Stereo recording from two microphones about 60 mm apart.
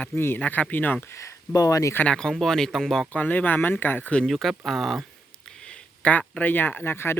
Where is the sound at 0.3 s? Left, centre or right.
Left.